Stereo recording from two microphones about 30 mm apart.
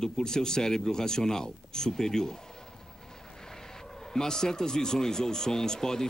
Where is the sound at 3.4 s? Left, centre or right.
Centre.